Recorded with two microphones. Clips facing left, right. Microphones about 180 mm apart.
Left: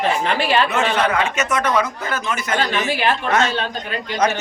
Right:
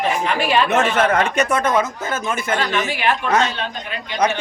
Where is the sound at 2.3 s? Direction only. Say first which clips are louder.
Right 2 dB; 55° right (ahead or behind).